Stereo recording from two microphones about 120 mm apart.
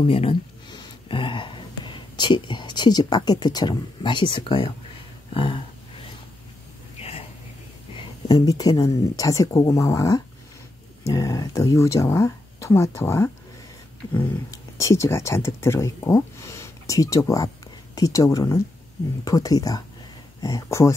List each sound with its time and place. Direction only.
0.0 s speech: 55° left (ahead or behind)
0.7 s speech: 35° left (ahead or behind)
7.0 s a sound: 55° left (ahead or behind)
7.9 s speech: 35° left (ahead or behind)
16.3 s a sound: 25° left (ahead or behind)
17.9 s speech: 30° left (ahead or behind)
20.6 s speech: 25° left (ahead or behind)